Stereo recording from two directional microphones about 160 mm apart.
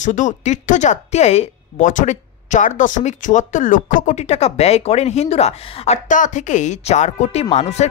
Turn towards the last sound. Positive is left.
turn(degrees=40)  # may be behind; listen again after turning